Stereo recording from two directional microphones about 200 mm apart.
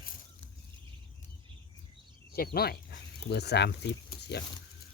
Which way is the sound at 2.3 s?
50° left (ahead or behind).